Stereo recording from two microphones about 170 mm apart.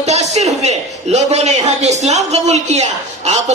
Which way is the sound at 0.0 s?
40° right (ahead or behind).